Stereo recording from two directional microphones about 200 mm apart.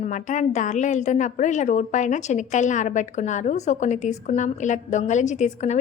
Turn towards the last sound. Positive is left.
turn(degrees=35)  # may be behind; listen again after turning